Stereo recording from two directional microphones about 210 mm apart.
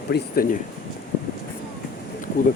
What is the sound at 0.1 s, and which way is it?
Speech, 50° left (ahead or behind).